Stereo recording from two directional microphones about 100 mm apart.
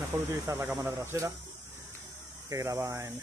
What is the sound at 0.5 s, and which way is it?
Speech, 30° right (ahead or behind).